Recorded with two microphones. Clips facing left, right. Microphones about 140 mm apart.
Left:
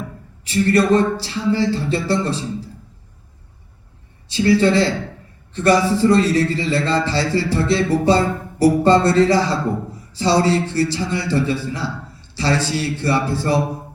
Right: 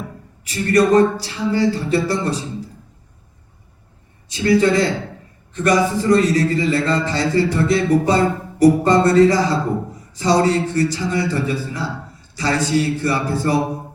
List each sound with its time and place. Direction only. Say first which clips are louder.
0.4 s speech: even; 30° left (ahead or behind)
4.3 s speech: even; 30° left (ahead or behind)
10.4 s speech: right 1 dB; 30° left (ahead or behind)